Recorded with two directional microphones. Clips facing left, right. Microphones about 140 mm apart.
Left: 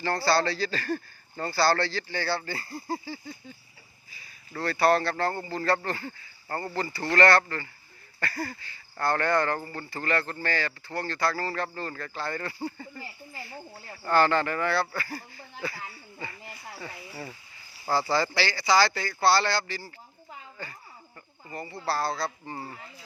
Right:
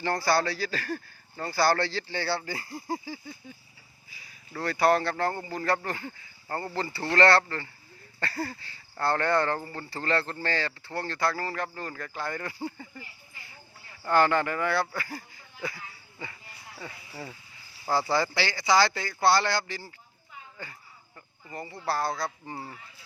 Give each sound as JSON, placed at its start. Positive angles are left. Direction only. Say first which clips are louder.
{"t": 0.0, "sound": "speech", "louder": "left 1 dB", "side_deg": -20}
{"t": 1.5, "sound": "speech", "louder": "even", "side_deg": -15}
{"t": 14.1, "sound": "speech", "louder": "even", "side_deg": -15}
{"t": 18.1, "sound": "speech", "louder": "left 1 dB", "side_deg": -20}
{"t": 21.5, "sound": "speech", "louder": "even", "side_deg": -20}